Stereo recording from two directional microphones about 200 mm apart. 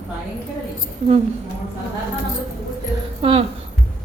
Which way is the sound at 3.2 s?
30° right (ahead or behind).